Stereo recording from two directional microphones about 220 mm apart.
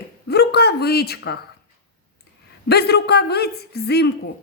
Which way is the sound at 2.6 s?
45° left (ahead or behind).